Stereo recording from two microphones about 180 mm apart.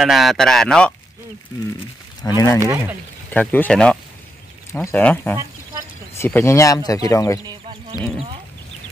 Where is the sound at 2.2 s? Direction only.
20° left (ahead or behind).